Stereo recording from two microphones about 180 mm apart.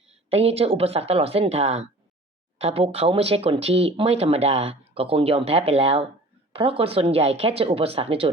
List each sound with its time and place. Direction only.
0.3 s speech: 35° right (ahead or behind)